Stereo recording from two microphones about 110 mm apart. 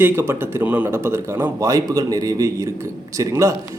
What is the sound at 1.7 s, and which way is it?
Speech, 35° right (ahead or behind).